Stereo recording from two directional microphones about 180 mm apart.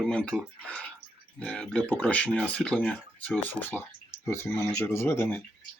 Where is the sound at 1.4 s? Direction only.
5° left (ahead or behind).